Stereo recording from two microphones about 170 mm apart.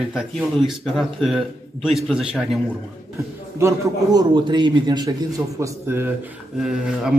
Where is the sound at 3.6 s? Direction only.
15° right (ahead or behind).